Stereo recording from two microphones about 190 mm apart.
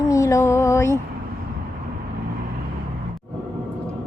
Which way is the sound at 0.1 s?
15° left (ahead or behind).